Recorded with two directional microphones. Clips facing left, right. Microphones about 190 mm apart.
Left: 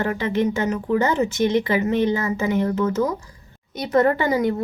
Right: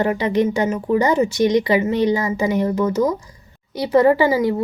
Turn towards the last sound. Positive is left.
turn(degrees=-5)  # may be behind; listen again after turning